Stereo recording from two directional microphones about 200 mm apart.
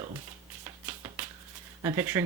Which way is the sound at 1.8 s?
10° right (ahead or behind).